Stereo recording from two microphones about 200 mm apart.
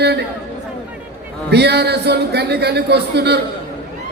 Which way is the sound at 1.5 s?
55° right (ahead or behind).